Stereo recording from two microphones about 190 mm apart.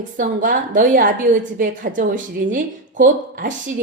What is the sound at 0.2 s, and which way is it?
A woman's voice, 45° right (ahead or behind).